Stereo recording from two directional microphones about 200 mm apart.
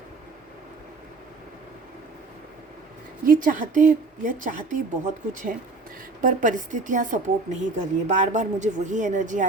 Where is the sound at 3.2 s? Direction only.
40° right (ahead or behind).